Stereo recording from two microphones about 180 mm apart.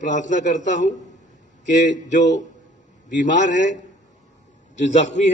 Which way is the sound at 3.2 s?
45° left (ahead or behind).